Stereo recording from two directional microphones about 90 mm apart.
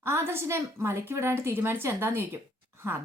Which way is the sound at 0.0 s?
30° right (ahead or behind).